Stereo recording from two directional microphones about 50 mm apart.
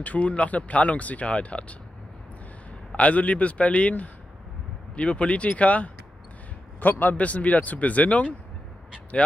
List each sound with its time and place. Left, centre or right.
0.0 s speech: left
2.9 s speech: left
6.8 s a man's voice: left